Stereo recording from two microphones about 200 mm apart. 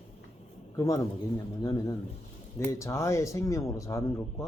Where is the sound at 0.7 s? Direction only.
15° left (ahead or behind).